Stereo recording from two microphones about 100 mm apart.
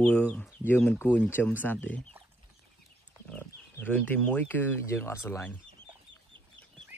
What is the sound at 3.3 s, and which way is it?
Speech, 20° left (ahead or behind).